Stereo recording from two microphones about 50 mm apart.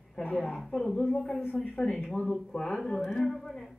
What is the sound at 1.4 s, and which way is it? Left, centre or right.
Speech, left.